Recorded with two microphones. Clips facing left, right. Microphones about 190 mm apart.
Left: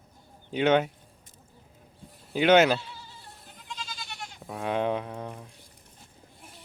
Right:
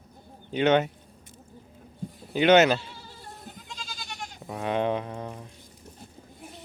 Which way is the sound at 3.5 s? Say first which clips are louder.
Left 1 dB; 40° right (ahead or behind).